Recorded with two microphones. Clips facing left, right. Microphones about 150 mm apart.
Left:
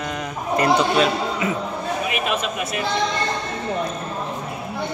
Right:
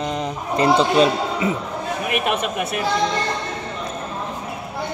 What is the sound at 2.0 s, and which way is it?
Speech, 60° right (ahead or behind).